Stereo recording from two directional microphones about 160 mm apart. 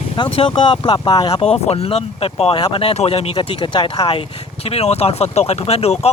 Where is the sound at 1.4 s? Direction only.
40° left (ahead or behind).